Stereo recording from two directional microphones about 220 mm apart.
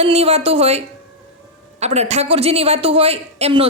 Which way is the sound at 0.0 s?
30° right (ahead or behind).